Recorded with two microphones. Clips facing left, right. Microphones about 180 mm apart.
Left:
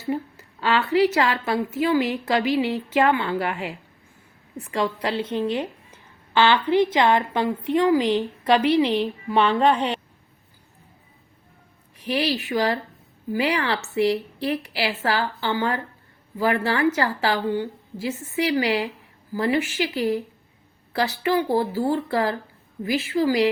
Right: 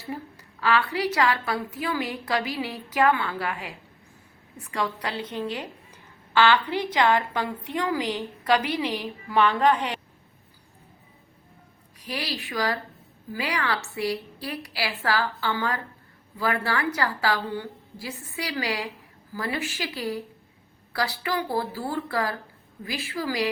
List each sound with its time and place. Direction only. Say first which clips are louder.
0.1 s a woman's voice: left 8 dB; 25° left (ahead or behind)
11.9 s a woman's voice: left 9 dB; 25° left (ahead or behind)